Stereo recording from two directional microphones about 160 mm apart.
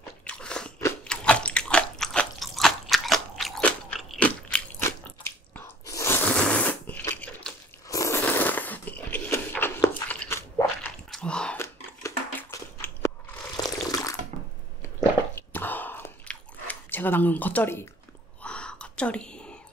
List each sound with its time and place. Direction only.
0.2 s biting: 5° left (ahead or behind)
7.9 s a sound: 15° left (ahead or behind)
11.1 s biting: 5° left (ahead or behind)
12.4 s a sound: 15° left (ahead or behind)
13.6 s water: 25° left (ahead or behind)
15.5 s chewing: 10° left (ahead or behind)
18.4 s whispering: 5° left (ahead or behind)